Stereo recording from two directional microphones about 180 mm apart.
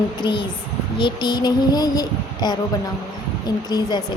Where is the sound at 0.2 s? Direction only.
25° left (ahead or behind).